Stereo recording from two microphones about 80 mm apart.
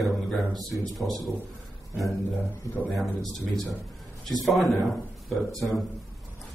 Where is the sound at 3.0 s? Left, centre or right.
Centre.